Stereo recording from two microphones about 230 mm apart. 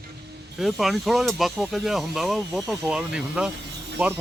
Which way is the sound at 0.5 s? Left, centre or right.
Centre.